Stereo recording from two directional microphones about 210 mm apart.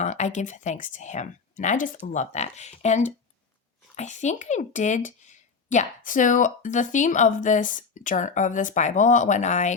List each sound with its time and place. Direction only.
0.0 s speech: 35° left (ahead or behind)